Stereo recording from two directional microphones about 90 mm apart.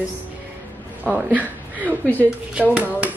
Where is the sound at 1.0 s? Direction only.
15° right (ahead or behind).